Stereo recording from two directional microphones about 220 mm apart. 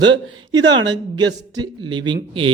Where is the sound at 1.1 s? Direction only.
20° right (ahead or behind).